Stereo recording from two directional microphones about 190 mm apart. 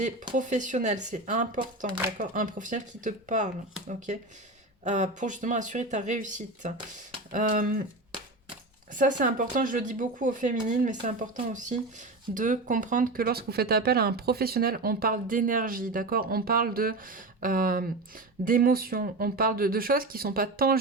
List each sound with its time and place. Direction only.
0.3 s speech: 40° right (ahead or behind)
8.9 s speech: 45° right (ahead or behind)